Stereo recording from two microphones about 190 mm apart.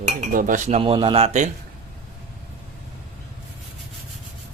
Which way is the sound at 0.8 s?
25° right (ahead or behind).